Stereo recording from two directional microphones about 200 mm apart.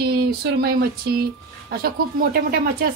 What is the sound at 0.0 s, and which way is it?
Speech, 50° right (ahead or behind).